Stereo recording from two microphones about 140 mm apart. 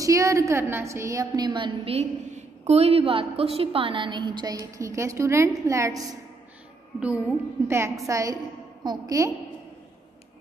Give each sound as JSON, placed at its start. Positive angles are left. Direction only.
{"t": 0.0, "sound": "a woman's voice", "side_deg": -25}
{"t": 4.6, "sound": "a woman's voice", "side_deg": -20}
{"t": 7.6, "sound": "a woman's voice", "side_deg": -20}